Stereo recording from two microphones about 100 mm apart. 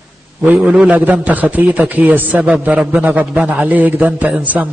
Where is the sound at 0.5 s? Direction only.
10° right (ahead or behind).